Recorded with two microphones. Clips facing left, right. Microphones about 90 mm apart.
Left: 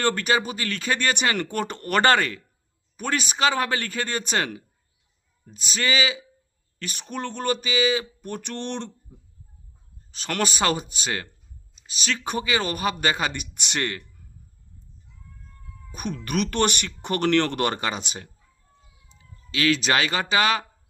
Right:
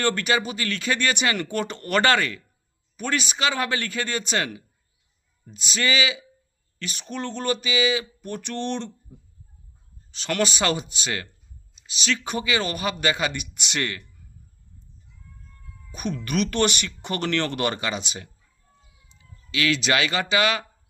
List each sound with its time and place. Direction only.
0.0 s speech: 40° left (ahead or behind)
10.1 s speech: 45° left (ahead or behind)
15.9 s speech: 40° left (ahead or behind)